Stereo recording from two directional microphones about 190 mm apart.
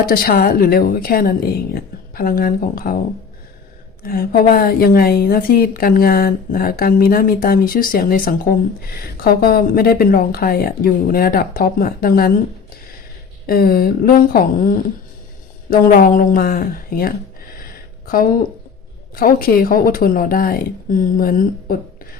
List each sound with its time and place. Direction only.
0.0 s a woman's voice: 50° left (ahead or behind)
4.0 s a woman's voice: 50° left (ahead or behind)
13.5 s a woman's voice: 50° left (ahead or behind)
15.7 s a woman's voice: 45° left (ahead or behind)
17.6 s a sound: 50° left (ahead or behind)
19.1 s a woman's voice: 50° left (ahead or behind)